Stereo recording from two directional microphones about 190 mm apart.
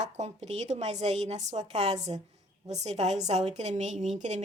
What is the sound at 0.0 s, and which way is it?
A woman's voice, 35° right (ahead or behind).